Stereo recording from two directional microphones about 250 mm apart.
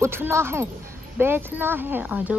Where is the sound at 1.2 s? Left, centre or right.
Centre.